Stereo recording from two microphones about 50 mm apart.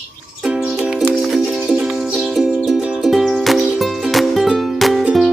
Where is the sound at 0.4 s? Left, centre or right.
Centre.